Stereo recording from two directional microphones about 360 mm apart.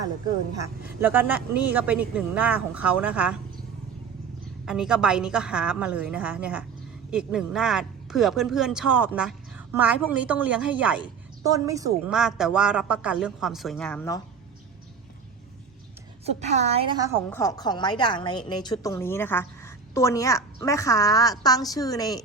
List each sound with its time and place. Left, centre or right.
0.6 s speech: centre
4.6 s speech: centre
16.2 s a woman's voice: centre
17.2 s a woman's voice: centre